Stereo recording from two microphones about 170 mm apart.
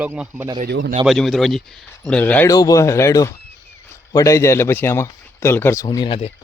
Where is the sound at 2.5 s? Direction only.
20° left (ahead or behind).